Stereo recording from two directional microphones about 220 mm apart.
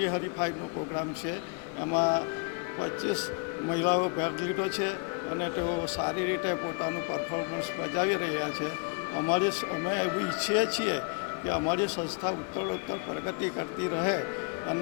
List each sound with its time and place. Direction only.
1.9 s speech: 25° left (ahead or behind)
3.8 s speech: 25° left (ahead or behind)
6.0 s speech: 20° left (ahead or behind)
13.9 s speech: 20° left (ahead or behind)